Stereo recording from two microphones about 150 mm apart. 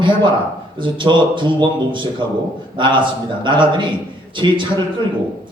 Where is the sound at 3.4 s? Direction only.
30° right (ahead or behind).